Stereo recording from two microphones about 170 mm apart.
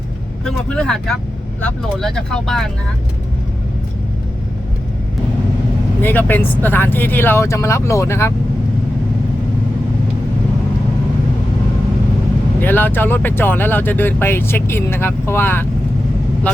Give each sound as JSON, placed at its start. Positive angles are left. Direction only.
{"t": 0.4, "sound": "speech", "side_deg": 5}
{"t": 6.0, "sound": "speech", "side_deg": 10}
{"t": 12.5, "sound": "speech", "side_deg": 10}